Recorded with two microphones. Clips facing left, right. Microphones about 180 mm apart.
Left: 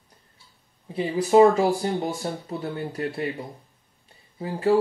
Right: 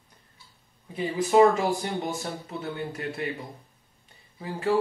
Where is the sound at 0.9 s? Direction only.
30° left (ahead or behind).